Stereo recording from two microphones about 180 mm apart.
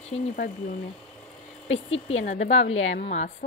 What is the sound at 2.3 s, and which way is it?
A woman's voice, 40° left (ahead or behind).